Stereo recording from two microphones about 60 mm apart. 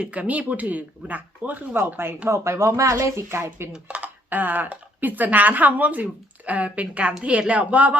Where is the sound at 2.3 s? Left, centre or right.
Right.